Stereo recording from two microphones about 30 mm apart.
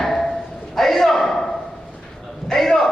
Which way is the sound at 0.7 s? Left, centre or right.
Centre.